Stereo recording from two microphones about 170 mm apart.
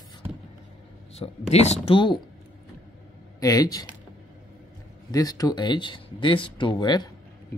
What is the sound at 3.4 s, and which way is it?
Speech, 20° left (ahead or behind).